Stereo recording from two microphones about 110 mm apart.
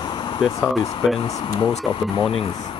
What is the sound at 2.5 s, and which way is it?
Speech, 40° left (ahead or behind).